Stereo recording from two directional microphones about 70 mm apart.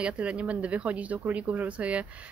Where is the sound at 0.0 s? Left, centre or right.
Centre.